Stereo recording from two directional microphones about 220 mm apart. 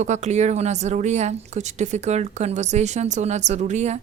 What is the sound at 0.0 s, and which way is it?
Speech, 30° right (ahead or behind).